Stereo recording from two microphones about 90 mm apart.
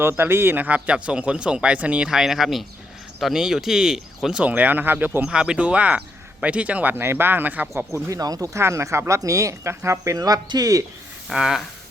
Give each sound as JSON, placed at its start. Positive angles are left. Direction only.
{"t": 0.0, "sound": "speech", "side_deg": -25}
{"t": 5.3, "sound": "speech", "side_deg": -10}
{"t": 7.9, "sound": "speech", "side_deg": -30}
{"t": 8.2, "sound": "speech", "side_deg": -45}
{"t": 11.3, "sound": "a sound", "side_deg": -5}